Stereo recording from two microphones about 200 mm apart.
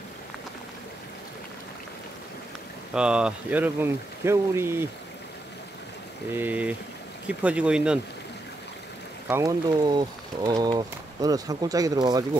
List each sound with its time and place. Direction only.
2.9 s speech: 5° right (ahead or behind)
6.3 s speech: 10° right (ahead or behind)
9.3 s speech: 15° right (ahead or behind)